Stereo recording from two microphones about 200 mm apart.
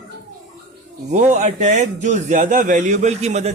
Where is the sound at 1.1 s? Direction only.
35° right (ahead or behind).